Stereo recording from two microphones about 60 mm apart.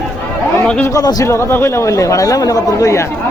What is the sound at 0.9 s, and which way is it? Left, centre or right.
Speech, left.